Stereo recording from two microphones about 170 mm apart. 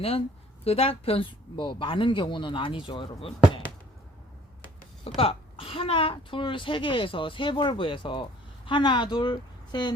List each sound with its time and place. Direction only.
0.6 s a woman's voice: 35° left (ahead or behind)
5.0 s a woman's voice: 35° left (ahead or behind)